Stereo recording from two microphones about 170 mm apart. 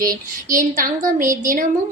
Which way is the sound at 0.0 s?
55° right (ahead or behind).